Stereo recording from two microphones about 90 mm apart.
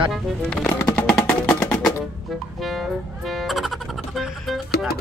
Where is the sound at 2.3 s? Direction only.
Centre (ahead or behind).